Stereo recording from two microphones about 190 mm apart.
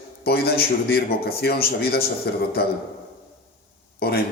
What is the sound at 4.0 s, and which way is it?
Speech, 55° left (ahead or behind).